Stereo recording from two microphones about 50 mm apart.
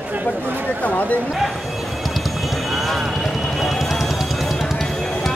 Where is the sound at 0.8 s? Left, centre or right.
Left.